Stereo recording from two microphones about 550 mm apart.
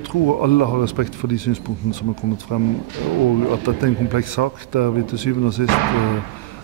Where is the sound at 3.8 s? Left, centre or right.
Left.